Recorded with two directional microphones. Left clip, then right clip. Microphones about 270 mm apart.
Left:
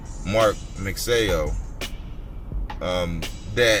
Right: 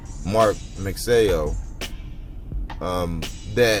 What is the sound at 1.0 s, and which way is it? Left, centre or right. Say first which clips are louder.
Speech: right 3 dB; right.